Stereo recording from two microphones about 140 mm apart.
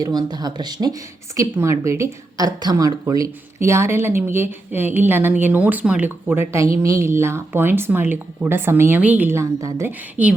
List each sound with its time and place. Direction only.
0.0 s speech: 30° right (ahead or behind); by 10.3 s 10° right (ahead or behind)